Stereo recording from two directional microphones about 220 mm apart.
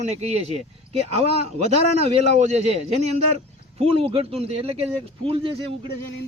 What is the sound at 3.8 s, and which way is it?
Speech, 25° right (ahead or behind).